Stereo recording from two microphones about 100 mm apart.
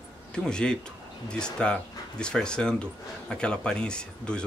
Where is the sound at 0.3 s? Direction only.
10° left (ahead or behind).